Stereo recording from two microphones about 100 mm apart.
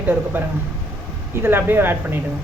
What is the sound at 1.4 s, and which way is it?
Speech, 20° right (ahead or behind).